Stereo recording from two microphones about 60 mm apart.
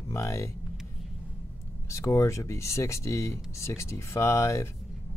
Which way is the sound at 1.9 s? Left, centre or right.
Left.